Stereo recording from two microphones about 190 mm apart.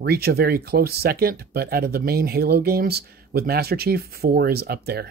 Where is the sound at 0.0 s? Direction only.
55° right (ahead or behind).